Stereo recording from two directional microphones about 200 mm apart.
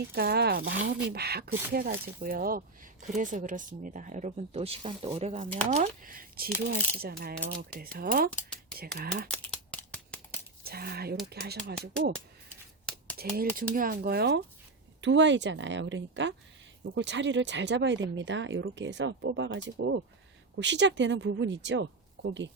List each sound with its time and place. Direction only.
0.1 s speech: 50° right (ahead or behind); by 5.5 s 30° right (ahead or behind)
5.6 s speech: 40° right (ahead or behind)
9.3 s a sound: 5° left (ahead or behind)
10.6 s speech: 50° right (ahead or behind)
13.1 s speech: 50° right (ahead or behind); by 22.4 s 65° right (ahead or behind)